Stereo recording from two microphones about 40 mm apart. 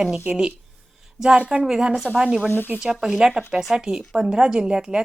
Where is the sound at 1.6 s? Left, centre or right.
Centre.